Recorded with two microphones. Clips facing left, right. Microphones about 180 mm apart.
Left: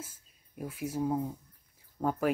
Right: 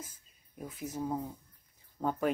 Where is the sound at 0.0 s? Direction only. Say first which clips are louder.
Left 2 dB; 10° left (ahead or behind).